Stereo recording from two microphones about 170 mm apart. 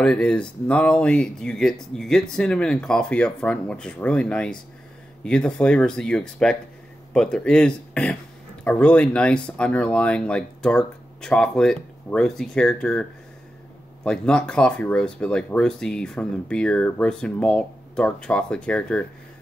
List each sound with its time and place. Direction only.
0.0 s speech: 5° left (ahead or behind)
14.0 s speech: 5° left (ahead or behind)